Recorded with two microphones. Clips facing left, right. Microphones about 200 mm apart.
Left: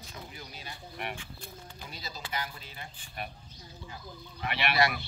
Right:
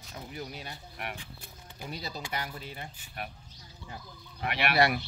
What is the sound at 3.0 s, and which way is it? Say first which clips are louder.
Speech: even; 5° right (ahead or behind).